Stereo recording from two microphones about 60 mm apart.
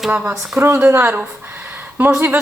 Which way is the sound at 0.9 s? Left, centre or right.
Right.